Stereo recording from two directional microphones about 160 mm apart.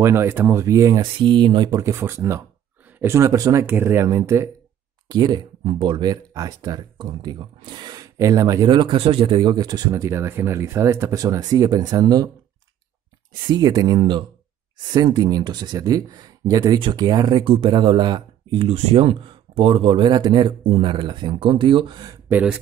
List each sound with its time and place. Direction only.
0.0 s speech: 15° right (ahead or behind)
13.5 s speech: 25° right (ahead or behind)
22.3 s speech: 5° right (ahead or behind)